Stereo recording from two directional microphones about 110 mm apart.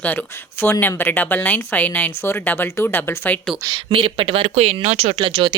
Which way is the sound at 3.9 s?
55° right (ahead or behind).